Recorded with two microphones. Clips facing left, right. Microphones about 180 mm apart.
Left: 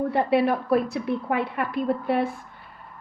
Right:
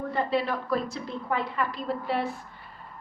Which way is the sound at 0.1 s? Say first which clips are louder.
Left 4 dB; 60° left (ahead or behind).